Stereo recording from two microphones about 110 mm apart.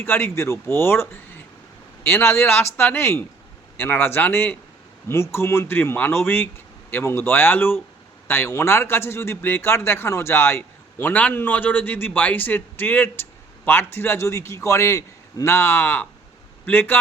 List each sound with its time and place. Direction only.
0.0 s a man's voice: 20° left (ahead or behind)